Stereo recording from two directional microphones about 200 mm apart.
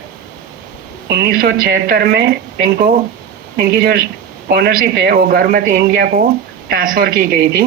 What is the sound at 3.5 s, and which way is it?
A man's voice, 50° right (ahead or behind).